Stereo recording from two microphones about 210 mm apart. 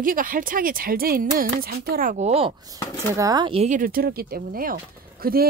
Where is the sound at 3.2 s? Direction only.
20° right (ahead or behind).